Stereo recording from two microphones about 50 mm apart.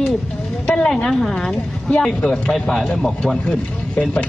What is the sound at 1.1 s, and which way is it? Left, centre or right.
A woman's voice, centre.